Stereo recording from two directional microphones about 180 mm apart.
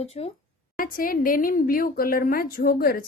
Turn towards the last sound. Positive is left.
turn(degrees=55)  # may be behind; listen again after turning